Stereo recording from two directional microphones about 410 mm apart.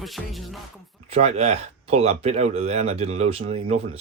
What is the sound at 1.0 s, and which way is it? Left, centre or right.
Speech, centre.